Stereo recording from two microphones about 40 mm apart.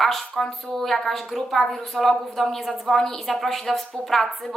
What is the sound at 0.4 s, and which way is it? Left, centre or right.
A woman's voice, centre.